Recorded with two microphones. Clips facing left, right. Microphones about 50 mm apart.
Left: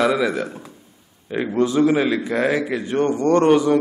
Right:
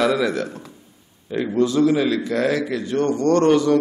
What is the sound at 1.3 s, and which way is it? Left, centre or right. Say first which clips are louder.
A man's voice: even; left.